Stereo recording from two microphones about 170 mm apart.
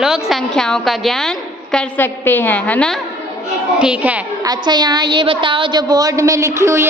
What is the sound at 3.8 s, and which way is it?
Speech, 5° right (ahead or behind).